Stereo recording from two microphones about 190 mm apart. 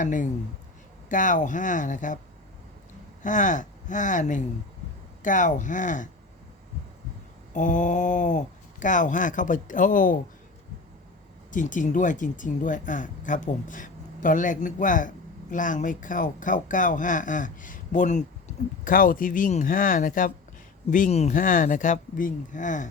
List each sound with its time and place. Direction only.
0.0 s speech: 40° left (ahead or behind)
3.2 s speech: 40° left (ahead or behind)
7.5 s speech: 40° left (ahead or behind)
11.5 s speech: 40° left (ahead or behind)